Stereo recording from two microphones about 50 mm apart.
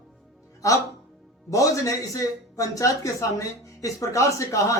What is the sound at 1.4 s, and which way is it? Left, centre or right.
Speech, left.